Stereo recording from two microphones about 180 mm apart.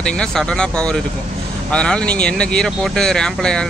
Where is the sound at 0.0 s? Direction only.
5° left (ahead or behind).